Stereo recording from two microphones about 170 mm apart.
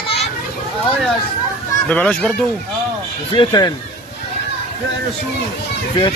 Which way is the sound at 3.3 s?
25° left (ahead or behind).